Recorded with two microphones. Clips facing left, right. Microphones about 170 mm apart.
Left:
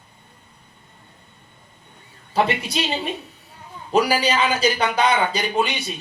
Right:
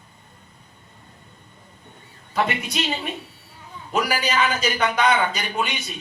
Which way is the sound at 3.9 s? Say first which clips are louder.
Left 4 dB; 30° left (ahead or behind).